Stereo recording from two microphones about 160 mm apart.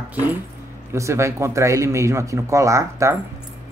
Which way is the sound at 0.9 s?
20° right (ahead or behind).